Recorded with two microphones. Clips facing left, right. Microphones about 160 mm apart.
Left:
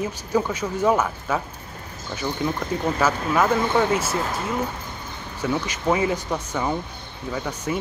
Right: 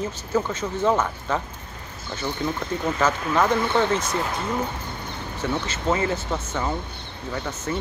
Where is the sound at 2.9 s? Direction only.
10° left (ahead or behind).